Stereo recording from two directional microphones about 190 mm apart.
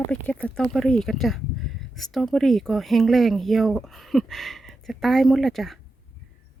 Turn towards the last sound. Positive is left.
turn(degrees=0)  # may be behind; listen again after turning